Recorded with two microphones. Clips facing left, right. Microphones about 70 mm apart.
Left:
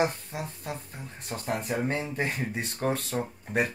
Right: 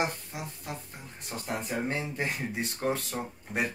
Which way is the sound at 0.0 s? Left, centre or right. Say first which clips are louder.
Left 4 dB; left.